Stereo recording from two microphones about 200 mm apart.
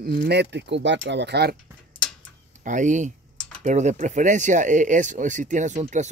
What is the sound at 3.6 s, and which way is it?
Speech, 35° right (ahead or behind).